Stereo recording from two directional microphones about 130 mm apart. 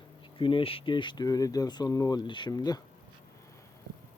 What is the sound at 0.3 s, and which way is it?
Speech, 40° left (ahead or behind).